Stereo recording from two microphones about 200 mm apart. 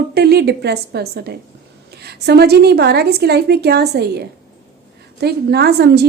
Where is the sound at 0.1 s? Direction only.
55° right (ahead or behind).